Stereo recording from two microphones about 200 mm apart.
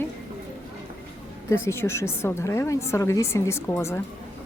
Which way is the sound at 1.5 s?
15° left (ahead or behind).